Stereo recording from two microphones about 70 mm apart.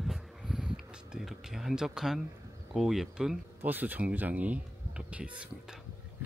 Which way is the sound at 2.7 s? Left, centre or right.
Centre.